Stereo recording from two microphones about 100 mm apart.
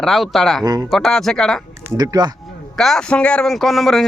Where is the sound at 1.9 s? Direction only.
40° right (ahead or behind).